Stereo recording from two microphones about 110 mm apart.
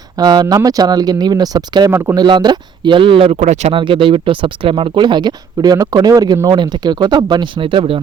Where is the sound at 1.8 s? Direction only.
25° right (ahead or behind).